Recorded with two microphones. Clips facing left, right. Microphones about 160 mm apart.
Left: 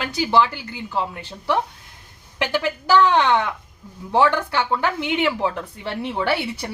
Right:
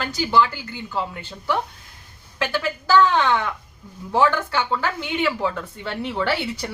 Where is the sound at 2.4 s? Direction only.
20° left (ahead or behind).